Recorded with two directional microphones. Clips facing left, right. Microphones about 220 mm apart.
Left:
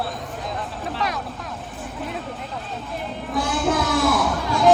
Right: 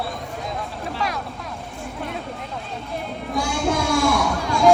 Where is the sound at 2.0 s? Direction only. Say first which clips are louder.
Even; centre (ahead or behind).